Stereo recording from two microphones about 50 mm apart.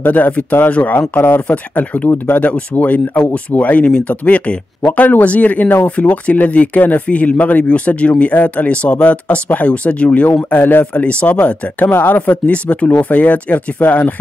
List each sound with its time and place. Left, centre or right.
0.0 s speech: left
1.1 s speech: left
1.5 s speech: left
10.9 s speech: left